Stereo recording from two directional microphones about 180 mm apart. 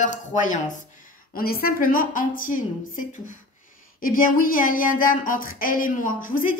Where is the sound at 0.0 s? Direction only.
45° left (ahead or behind).